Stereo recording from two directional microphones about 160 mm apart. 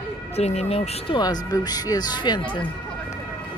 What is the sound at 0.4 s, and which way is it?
Speech, 40° left (ahead or behind).